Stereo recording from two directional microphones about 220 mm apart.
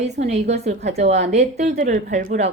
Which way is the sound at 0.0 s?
30° right (ahead or behind).